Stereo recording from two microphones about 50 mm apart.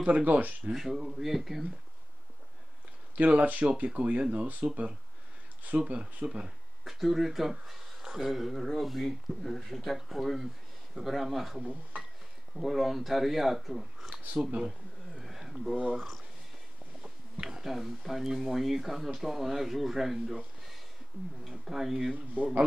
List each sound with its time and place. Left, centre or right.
0.0 s speech: right
0.7 s speech: centre
3.2 s speech: right
6.4 s speech: centre
14.1 s speech: right
15.1 s a sound: centre
15.7 s speech: right
17.0 s speech: centre
21.5 s speech: centre
22.1 s speech: right